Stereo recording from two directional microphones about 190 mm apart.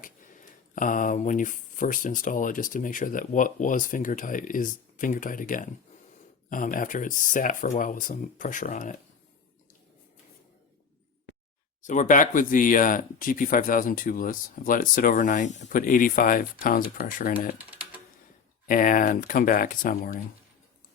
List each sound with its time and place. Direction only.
0.0 s speech: 45° left (ahead or behind)
11.8 s speech: 40° left (ahead or behind)
17.6 s typing: 10° right (ahead or behind)
18.7 s speech: 45° left (ahead or behind)